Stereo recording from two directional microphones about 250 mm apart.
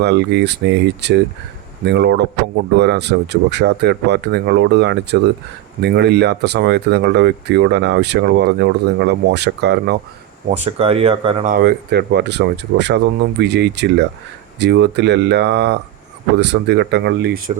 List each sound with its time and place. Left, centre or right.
0.0 s speech: right
10.6 s speech: right
11.5 s speech: right